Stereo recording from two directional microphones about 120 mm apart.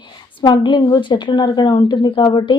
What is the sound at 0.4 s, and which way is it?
A woman's voice, 40° left (ahead or behind).